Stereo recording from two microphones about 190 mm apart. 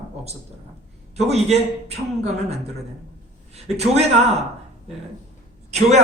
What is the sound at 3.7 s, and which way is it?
Speech, 35° right (ahead or behind).